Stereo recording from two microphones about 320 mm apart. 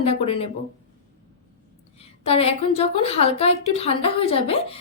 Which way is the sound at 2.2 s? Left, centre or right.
Centre.